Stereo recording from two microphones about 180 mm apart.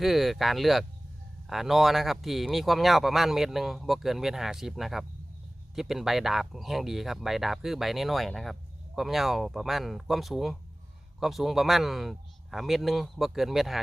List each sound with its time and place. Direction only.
0.0 s speech: centre (ahead or behind)